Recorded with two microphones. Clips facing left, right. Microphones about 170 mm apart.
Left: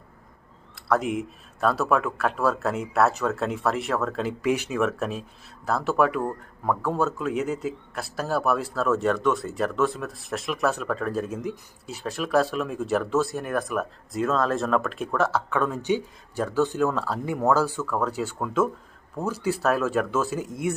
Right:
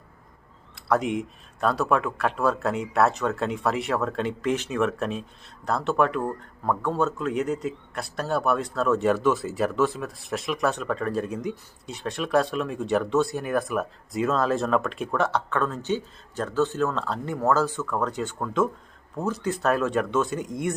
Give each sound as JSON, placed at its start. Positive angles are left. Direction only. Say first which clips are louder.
{"t": 0.8, "sound": "speech", "louder": "even", "side_deg": 0}